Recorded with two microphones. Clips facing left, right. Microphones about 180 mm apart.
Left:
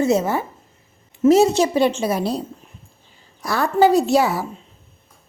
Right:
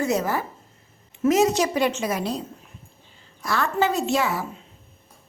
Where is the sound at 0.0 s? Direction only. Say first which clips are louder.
Left 5 dB; 25° left (ahead or behind).